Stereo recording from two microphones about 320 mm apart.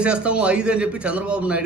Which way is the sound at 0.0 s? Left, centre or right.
Centre.